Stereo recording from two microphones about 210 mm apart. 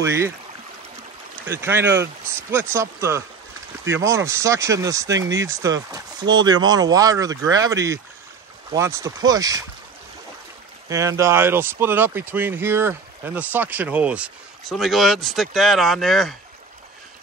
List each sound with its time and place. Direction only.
0.0 s speech: 15° right (ahead or behind)
1.5 s speech: 10° right (ahead or behind)
10.9 s speech: 15° right (ahead or behind); by 16.3 s centre (ahead or behind)